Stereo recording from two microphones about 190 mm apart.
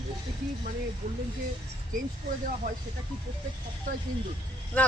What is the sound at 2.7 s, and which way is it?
Speech, 45° right (ahead or behind).